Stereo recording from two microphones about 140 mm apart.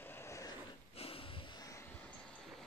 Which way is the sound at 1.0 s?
40° left (ahead or behind).